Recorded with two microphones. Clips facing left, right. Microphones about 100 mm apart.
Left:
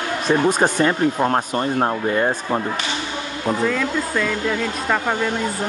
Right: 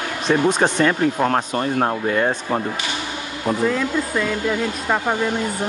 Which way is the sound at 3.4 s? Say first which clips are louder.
Right 1 dB; 15° right (ahead or behind).